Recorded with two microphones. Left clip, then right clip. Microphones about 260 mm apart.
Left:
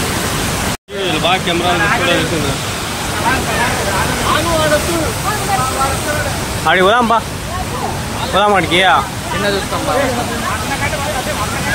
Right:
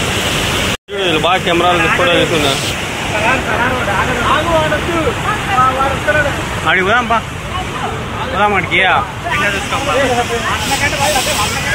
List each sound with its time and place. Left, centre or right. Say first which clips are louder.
1.0 s speech: right 2 dB; centre
6.7 s speech: left 2 dB; left
8.4 s speech: left 1 dB; centre